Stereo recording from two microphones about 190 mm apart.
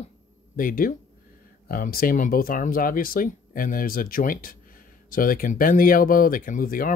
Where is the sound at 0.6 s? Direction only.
50° left (ahead or behind).